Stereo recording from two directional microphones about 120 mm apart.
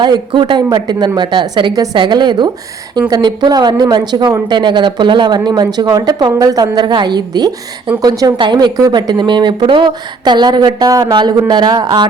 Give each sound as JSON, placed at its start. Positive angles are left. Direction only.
{"t": 0.0, "sound": "a woman's voice", "side_deg": -40}